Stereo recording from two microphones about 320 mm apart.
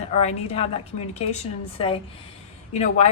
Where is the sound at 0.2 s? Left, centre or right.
Centre.